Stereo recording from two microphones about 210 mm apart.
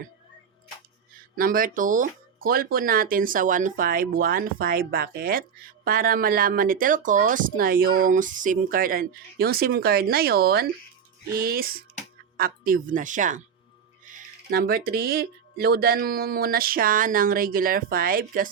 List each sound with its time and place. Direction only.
1.4 s speech: 40° right (ahead or behind)